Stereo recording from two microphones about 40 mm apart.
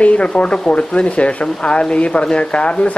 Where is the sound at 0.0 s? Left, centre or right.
Left.